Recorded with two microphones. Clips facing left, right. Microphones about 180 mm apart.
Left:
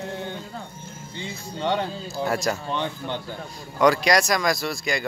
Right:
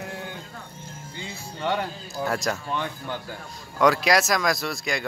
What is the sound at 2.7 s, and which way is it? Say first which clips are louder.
Speech: left 2 dB; 20° left (ahead or behind).